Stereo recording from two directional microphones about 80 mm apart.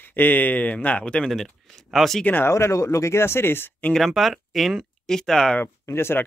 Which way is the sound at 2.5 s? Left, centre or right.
Left.